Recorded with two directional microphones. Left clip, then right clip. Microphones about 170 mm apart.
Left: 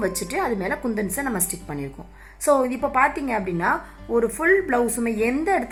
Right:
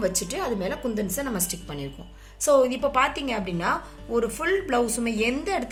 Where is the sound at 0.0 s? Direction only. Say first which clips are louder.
Left 3 dB; 55° left (ahead or behind).